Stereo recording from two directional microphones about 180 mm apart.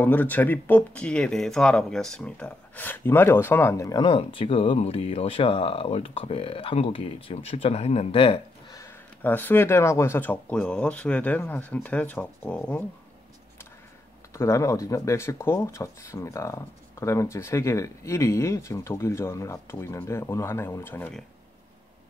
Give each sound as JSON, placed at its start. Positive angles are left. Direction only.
{"t": 0.0, "sound": "speech", "side_deg": 10}
{"t": 8.7, "sound": "speech", "side_deg": 15}
{"t": 14.3, "sound": "speech", "side_deg": 15}